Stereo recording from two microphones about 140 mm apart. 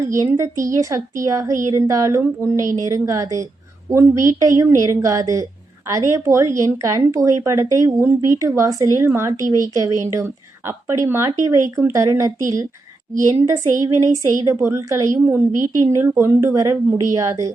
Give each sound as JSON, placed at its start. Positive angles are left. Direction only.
{"t": 0.0, "sound": "a woman's voice", "side_deg": -20}
{"t": 13.4, "sound": "a woman's voice", "side_deg": -25}